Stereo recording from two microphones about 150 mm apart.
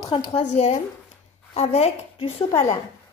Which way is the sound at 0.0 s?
30° left (ahead or behind).